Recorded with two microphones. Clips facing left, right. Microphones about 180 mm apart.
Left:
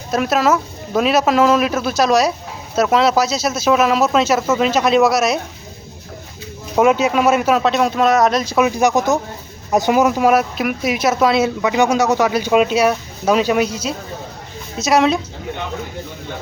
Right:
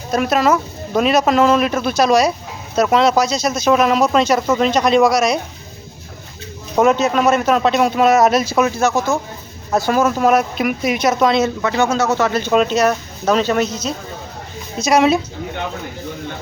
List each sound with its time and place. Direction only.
0.1 s speech: centre (ahead or behind)
6.7 s speech: 10° left (ahead or behind)
8.5 s speech: 10° left (ahead or behind)